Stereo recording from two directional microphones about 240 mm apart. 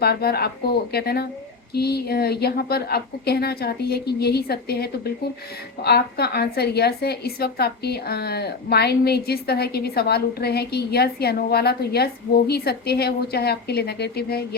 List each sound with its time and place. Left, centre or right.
0.0 s a woman's voice: left